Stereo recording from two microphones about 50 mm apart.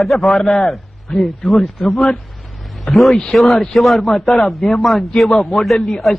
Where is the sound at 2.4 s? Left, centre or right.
Centre.